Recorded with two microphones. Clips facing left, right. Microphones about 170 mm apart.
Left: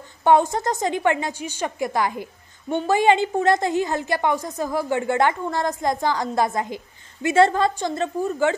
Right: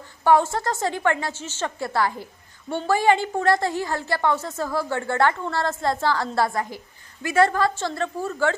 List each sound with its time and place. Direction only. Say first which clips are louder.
0.2 s a woman's voice: left 1 dB; 20° left (ahead or behind)